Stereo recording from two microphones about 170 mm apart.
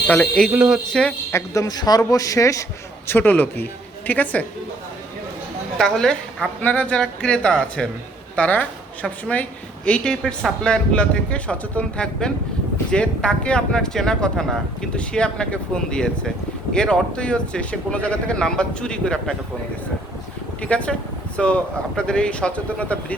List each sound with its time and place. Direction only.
0.1 s a woman's voice: 5° left (ahead or behind)
5.7 s a woman's voice: 5° left (ahead or behind)
20.6 s a woman's voice: 5° left (ahead or behind)